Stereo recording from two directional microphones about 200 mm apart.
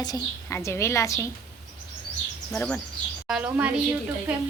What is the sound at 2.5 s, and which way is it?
Speech, 5° left (ahead or behind).